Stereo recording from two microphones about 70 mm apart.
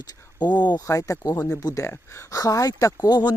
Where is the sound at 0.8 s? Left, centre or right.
Left.